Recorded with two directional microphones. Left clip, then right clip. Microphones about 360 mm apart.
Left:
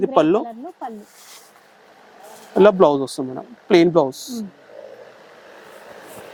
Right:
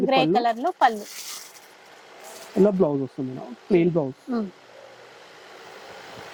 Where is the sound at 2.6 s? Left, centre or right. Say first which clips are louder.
Left 8 dB; centre.